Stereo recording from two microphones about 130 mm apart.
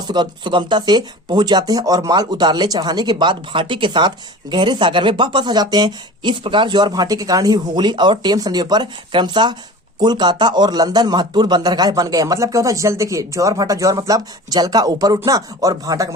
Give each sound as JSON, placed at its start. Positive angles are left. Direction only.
{"t": 0.1, "sound": "speech", "side_deg": -35}